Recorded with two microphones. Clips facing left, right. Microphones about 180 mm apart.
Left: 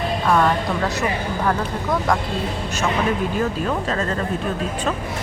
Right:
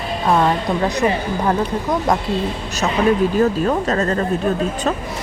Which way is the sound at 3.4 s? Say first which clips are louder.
Right 5 dB; 40° right (ahead or behind).